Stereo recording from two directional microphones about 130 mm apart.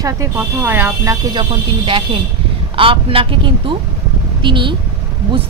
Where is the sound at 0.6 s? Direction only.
15° right (ahead or behind).